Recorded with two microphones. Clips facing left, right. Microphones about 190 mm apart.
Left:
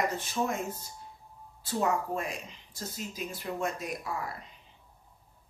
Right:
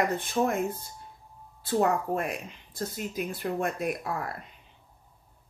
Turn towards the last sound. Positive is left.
turn(degrees=-60)  # may be behind; listen again after turning